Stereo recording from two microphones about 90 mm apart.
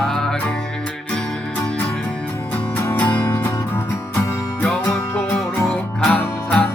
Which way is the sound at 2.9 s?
15° left (ahead or behind).